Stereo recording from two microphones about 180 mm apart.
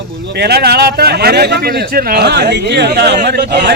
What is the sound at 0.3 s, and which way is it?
A man's voice, 65° right (ahead or behind).